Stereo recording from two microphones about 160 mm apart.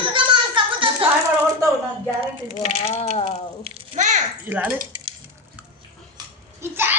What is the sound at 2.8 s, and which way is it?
Speech, 40° left (ahead or behind).